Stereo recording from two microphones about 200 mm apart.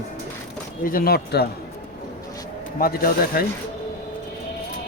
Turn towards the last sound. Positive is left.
turn(degrees=45)  # may be behind; listen again after turning